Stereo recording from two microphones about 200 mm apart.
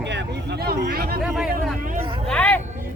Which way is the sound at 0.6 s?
50° right (ahead or behind).